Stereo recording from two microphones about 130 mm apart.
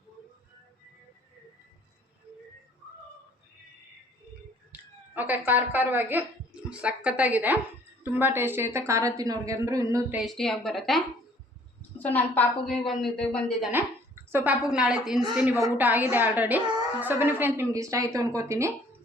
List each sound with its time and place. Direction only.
4.7 s a woman's voice: 15° right (ahead or behind)
10.2 s a woman's voice: 5° left (ahead or behind)
11.8 s a woman's voice: 10° left (ahead or behind)
14.3 s a woman's voice: 15° right (ahead or behind)